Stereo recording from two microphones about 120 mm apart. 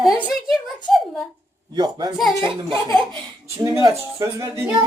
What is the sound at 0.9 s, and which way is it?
Speech, centre (ahead or behind).